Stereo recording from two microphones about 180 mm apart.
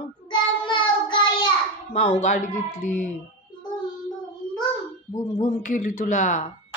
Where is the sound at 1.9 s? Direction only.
40° left (ahead or behind).